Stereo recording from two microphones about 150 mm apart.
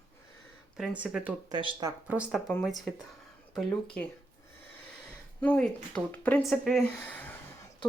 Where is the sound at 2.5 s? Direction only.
Centre (ahead or behind).